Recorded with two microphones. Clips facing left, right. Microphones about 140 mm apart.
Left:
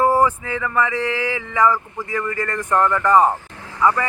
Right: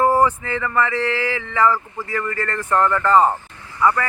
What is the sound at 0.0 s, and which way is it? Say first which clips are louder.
Speech: even; 10° left (ahead or behind).